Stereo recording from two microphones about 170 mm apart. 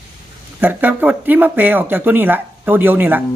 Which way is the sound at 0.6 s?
10° right (ahead or behind).